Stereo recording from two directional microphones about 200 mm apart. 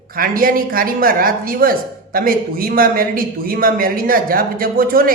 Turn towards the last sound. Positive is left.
turn(degrees=-45)  # may be behind; listen again after turning